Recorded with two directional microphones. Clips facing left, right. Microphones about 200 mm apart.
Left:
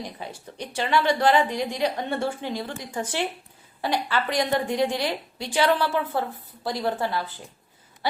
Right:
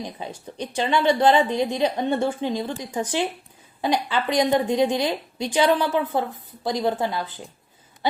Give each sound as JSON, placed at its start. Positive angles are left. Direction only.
{"t": 0.0, "sound": "a woman's voice", "side_deg": -20}